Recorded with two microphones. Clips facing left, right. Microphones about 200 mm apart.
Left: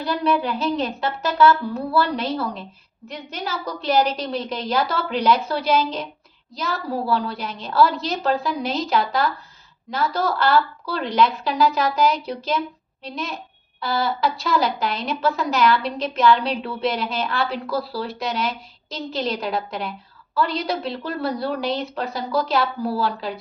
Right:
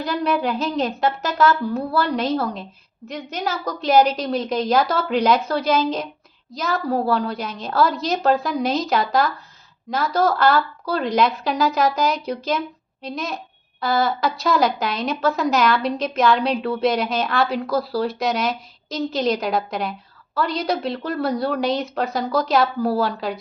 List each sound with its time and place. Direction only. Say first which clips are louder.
0.0 s a woman's voice: even; 40° right (ahead or behind)